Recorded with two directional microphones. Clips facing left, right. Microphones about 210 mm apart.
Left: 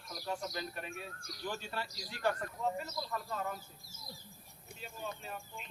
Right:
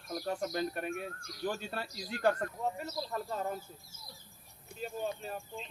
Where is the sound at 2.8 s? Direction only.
35° right (ahead or behind).